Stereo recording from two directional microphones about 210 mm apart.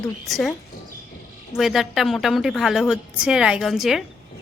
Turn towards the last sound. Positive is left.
turn(degrees=0)  # may be behind; listen again after turning